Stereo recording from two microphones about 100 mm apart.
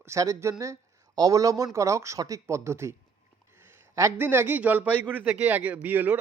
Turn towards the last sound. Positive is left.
turn(degrees=-20)  # may be behind; listen again after turning